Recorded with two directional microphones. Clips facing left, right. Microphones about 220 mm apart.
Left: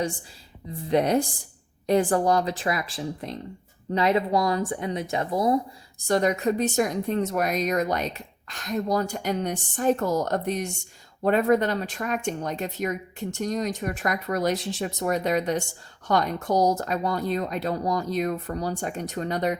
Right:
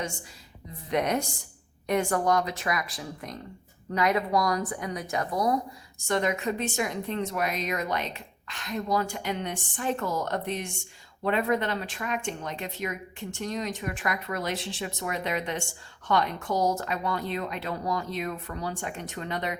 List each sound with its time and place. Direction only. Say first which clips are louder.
0.9 s a woman's voice: left 5 dB; 30° left (ahead or behind)
6.1 s a woman's voice: left 5 dB; 40° left (ahead or behind)